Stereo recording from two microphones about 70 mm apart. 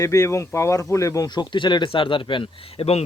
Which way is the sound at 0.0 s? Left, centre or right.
Left.